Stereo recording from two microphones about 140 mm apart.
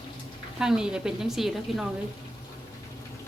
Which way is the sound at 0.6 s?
5° right (ahead or behind).